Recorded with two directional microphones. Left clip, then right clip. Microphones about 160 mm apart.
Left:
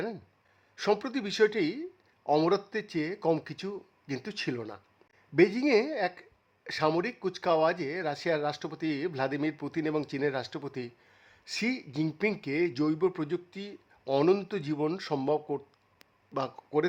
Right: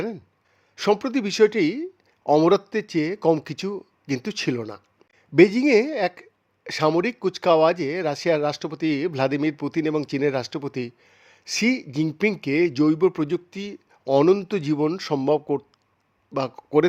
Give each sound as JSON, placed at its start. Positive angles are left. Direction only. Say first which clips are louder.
{"t": 0.8, "sound": "speech", "louder": "right 7 dB", "side_deg": -30}
{"t": 14.0, "sound": "speech", "louder": "right 9 dB", "side_deg": -20}
{"t": 14.4, "sound": "speech", "louder": "right 8 dB", "side_deg": -35}